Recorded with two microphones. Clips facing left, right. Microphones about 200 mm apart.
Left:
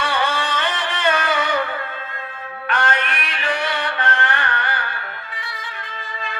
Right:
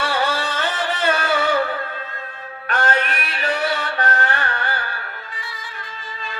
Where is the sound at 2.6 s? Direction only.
40° right (ahead or behind).